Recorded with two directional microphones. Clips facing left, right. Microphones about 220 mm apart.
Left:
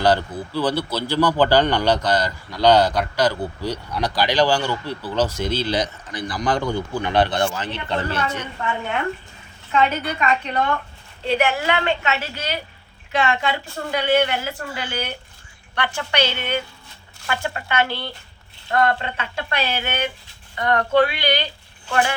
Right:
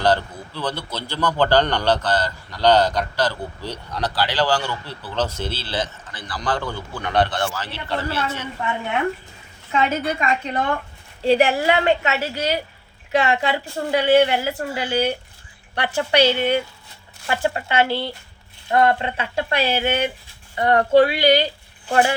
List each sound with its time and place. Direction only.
0.0 s a man's voice: 10° left (ahead or behind)
9.7 s a woman's voice: 30° right (ahead or behind)
19.5 s a woman's voice: 35° right (ahead or behind)